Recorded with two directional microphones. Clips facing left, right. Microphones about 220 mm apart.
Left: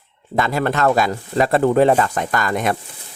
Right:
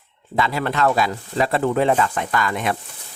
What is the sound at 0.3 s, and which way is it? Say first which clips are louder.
Speech: left 2 dB; 45° left (ahead or behind).